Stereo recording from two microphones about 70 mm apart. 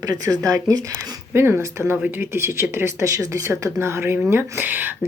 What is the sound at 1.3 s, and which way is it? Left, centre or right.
Speech, right.